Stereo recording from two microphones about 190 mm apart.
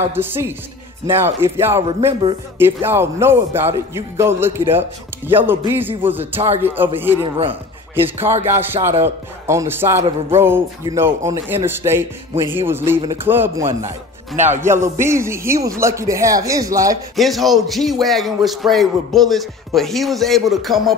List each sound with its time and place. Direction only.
0.1 s a man's voice: 10° right (ahead or behind)
1.8 s speech: 30° right (ahead or behind)
2.6 s a man's voice: 10° right (ahead or behind)
14.3 s speech: 40° right (ahead or behind)
14.6 s a man's voice: 15° right (ahead or behind)
17.1 s speech: centre (ahead or behind)